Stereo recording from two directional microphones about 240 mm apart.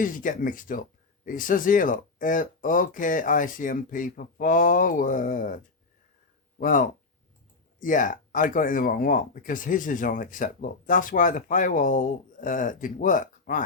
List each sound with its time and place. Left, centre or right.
0.0 s speech: left
6.6 s speech: left